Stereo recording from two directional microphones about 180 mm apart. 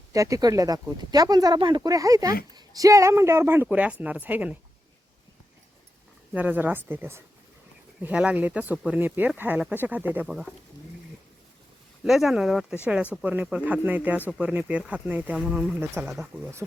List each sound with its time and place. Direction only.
0.1 s speech: 20° right (ahead or behind)
6.3 s speech: 10° right (ahead or behind)
12.0 s speech: centre (ahead or behind)